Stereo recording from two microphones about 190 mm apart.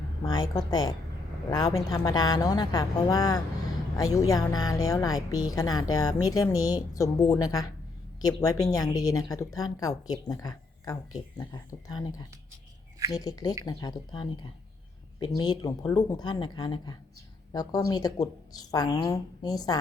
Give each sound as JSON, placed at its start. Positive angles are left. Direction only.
{"t": 0.2, "sound": "a woman's voice", "side_deg": 20}